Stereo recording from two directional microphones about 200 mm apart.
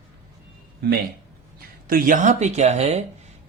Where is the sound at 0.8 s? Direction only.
55° right (ahead or behind).